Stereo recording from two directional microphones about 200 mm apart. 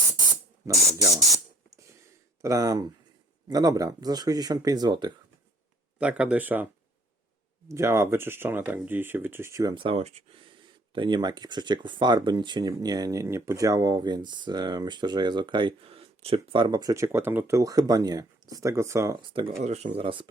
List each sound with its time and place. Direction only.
0.2 s spray: 20° right (ahead or behind)
2.4 s speech: 15° right (ahead or behind)
6.0 s speech: 5° right (ahead or behind)
7.7 s speech: 15° right (ahead or behind)
19.6 s speech: 30° right (ahead or behind)